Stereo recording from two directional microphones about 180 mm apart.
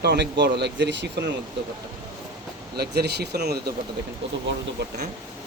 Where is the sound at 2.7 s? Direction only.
60° right (ahead or behind).